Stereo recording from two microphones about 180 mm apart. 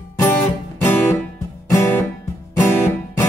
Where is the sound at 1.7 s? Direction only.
15° left (ahead or behind).